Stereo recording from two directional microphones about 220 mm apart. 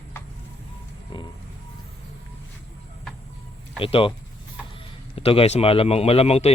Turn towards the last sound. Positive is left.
turn(degrees=30)  # may be behind; listen again after turning